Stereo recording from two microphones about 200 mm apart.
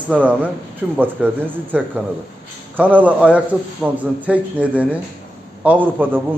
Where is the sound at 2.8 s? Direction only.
10° right (ahead or behind).